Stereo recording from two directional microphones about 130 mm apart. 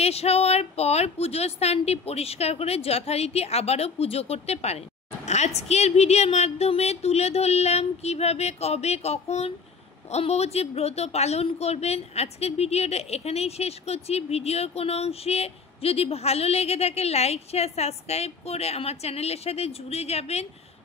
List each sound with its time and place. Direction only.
0.0 s a woman's voice: 50° left (ahead or behind)